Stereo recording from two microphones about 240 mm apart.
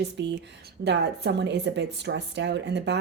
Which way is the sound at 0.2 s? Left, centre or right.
Right.